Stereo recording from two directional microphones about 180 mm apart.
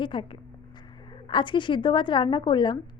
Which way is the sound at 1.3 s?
25° left (ahead or behind).